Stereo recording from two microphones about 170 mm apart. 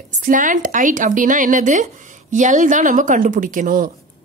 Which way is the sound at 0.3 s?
50° right (ahead or behind).